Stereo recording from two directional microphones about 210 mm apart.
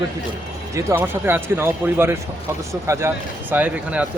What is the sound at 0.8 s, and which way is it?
Speech, 10° right (ahead or behind).